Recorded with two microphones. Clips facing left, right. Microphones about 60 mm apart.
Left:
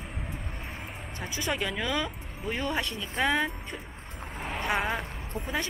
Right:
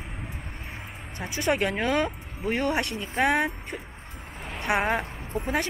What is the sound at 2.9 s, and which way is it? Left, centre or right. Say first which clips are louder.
Speech: right 2 dB; right.